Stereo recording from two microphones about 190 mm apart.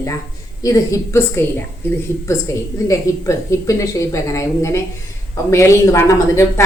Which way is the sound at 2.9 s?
15° left (ahead or behind).